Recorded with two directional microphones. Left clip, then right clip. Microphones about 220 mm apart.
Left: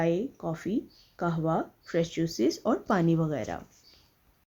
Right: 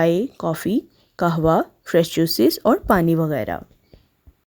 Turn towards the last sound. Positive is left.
turn(degrees=-40)  # may be behind; listen again after turning